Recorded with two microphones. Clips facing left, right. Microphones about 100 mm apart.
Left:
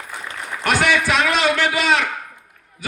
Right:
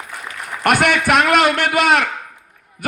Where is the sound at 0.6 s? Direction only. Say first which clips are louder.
Right 3 dB; 55° right (ahead or behind).